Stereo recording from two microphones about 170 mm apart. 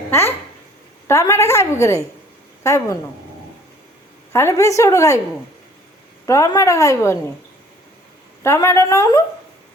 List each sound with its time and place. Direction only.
1.0 s a woman's voice: 15° left (ahead or behind)
4.3 s a woman's voice: 15° left (ahead or behind)
6.2 s a woman's voice: 20° left (ahead or behind)
8.4 s a woman's voice: 15° left (ahead or behind)